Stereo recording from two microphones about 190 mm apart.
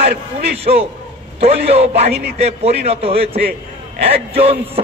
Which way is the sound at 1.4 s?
35° right (ahead or behind).